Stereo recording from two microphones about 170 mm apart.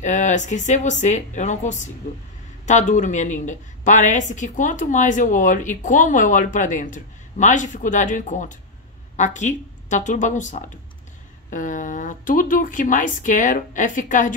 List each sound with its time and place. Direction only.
0.0 s a woman's voice: 45° left (ahead or behind)